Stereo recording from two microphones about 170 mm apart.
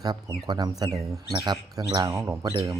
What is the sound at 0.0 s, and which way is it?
Speech, 25° right (ahead or behind).